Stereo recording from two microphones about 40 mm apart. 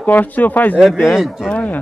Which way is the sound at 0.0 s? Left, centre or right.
Left.